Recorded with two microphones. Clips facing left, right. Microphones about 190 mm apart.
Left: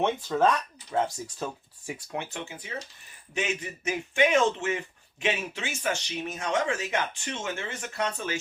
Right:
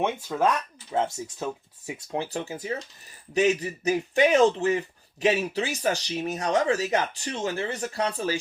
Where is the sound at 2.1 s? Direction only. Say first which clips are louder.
Right 7 dB; 35° right (ahead or behind).